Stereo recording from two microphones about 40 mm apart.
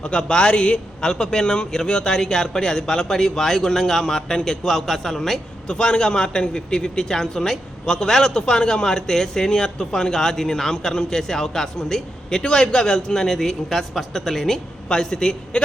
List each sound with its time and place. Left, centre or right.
0.0 s a man's voice: left
5.6 s a man's voice: left